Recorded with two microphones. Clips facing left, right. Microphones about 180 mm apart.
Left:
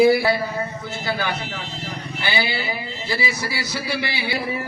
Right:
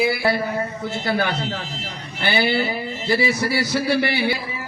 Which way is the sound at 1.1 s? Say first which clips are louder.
Right 3 dB; 55° right (ahead or behind).